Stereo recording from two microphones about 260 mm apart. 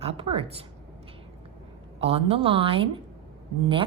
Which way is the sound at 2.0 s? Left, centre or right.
Right.